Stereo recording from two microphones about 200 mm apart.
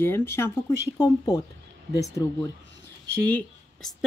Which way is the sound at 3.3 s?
5° left (ahead or behind).